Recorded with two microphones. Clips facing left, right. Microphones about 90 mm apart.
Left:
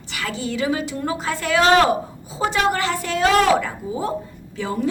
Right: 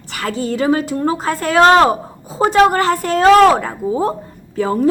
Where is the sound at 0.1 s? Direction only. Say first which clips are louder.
Right 6 dB; 45° right (ahead or behind).